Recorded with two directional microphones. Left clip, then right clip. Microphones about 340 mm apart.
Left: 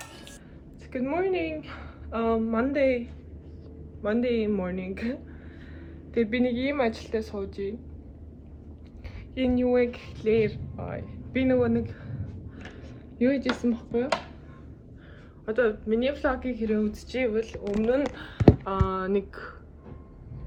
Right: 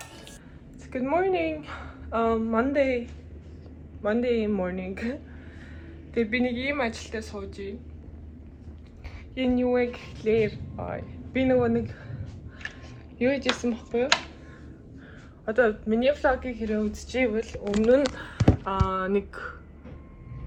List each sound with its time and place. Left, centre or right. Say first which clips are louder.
0.9 s speech: right 3 dB; centre
4.0 s speech: right 1 dB; centre
6.1 s speech: even; centre
9.3 s speech: even; centre
13.1 s speech: right 1 dB; centre
15.4 s speech: right 2 dB; centre